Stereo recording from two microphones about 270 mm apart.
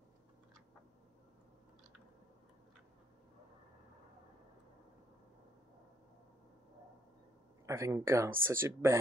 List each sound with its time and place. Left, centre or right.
7.6 s speech: centre